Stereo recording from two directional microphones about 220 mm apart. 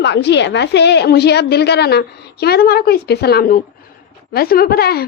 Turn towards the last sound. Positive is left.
turn(degrees=45)  # may be behind; listen again after turning